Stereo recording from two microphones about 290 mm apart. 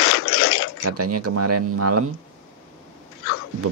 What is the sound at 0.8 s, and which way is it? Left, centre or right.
Speech, right.